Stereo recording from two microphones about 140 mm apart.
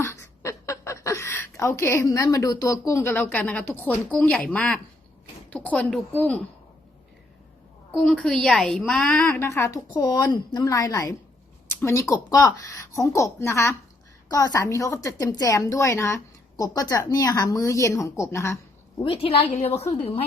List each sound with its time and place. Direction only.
0.0 s a woman's voice: 20° left (ahead or behind)
8.0 s a woman's voice: 5° left (ahead or behind)
9.5 s a woman's voice: 20° left (ahead or behind)
19.1 s a woman's voice: 40° left (ahead or behind)
19.5 s a woman's voice: 50° left (ahead or behind)